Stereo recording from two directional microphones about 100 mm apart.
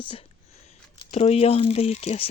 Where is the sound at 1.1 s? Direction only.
90° left.